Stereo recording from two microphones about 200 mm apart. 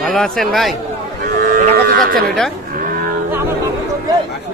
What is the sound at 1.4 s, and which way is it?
Cattle, 45° right (ahead or behind).